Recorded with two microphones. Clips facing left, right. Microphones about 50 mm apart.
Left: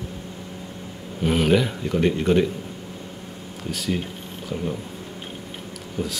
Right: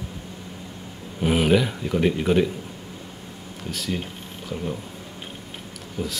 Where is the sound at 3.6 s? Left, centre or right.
Centre.